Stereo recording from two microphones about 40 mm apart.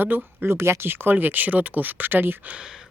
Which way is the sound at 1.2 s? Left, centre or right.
Right.